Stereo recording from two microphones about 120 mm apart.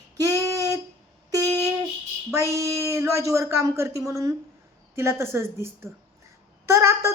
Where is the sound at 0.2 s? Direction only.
30° right (ahead or behind).